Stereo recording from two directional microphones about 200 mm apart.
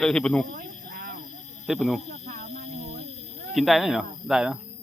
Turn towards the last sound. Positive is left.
turn(degrees=-5)  # may be behind; listen again after turning